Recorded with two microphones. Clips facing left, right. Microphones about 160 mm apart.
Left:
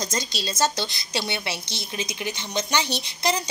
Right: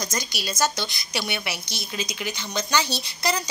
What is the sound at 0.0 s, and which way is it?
A woman's voice, 25° left (ahead or behind).